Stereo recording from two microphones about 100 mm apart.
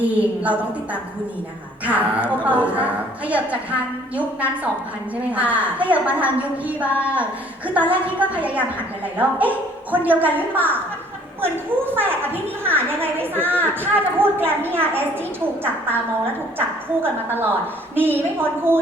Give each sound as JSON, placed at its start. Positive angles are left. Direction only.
{"t": 0.0, "sound": "a woman's voice", "side_deg": -15}
{"t": 1.8, "sound": "a woman's voice", "side_deg": -15}
{"t": 16.6, "sound": "a woman's voice", "side_deg": -20}